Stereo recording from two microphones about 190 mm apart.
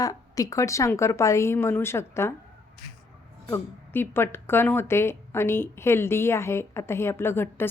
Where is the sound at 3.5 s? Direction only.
10° left (ahead or behind).